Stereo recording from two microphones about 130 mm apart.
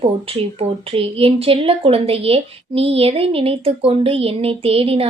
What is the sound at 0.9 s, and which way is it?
A woman's voice, 45° right (ahead or behind).